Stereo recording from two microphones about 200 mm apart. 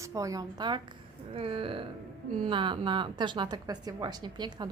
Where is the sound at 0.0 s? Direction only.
15° right (ahead or behind).